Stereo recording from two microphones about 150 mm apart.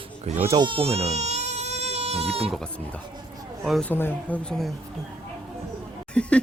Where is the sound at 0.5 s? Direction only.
35° right (ahead or behind).